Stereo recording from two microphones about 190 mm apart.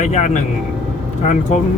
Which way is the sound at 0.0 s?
35° left (ahead or behind).